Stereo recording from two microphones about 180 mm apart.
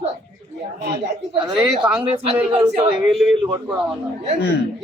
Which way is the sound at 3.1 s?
5° right (ahead or behind).